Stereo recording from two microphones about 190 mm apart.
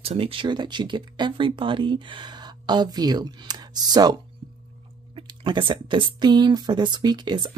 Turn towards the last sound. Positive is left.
turn(degrees=-25)  # may be behind; listen again after turning